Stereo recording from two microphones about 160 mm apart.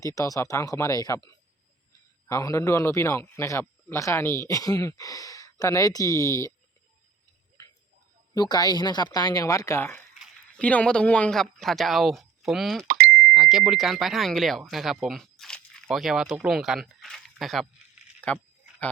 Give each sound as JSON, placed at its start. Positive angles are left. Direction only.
{"t": 0.0, "sound": "a man's voice", "side_deg": 20}
{"t": 8.3, "sound": "a man's voice", "side_deg": 25}